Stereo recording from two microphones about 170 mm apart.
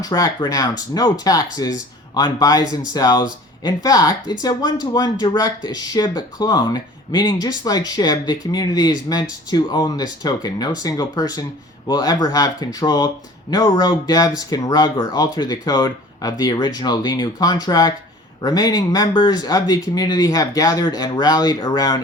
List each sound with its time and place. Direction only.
0.0 s speech: 25° left (ahead or behind)